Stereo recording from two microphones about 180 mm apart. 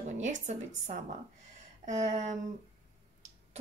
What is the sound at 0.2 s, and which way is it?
A woman's voice, 40° right (ahead or behind).